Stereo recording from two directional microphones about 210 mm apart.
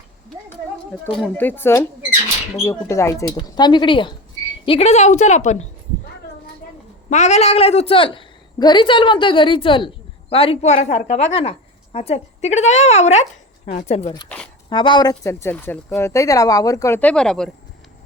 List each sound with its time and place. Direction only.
1.4 s a woman's voice: 10° left (ahead or behind); by 5.6 s 35° left (ahead or behind)
7.1 s a woman's voice: 35° left (ahead or behind)
14.3 s speech: 5° left (ahead or behind)
14.7 s speech: 20° left (ahead or behind); by 17.5 s 5° left (ahead or behind)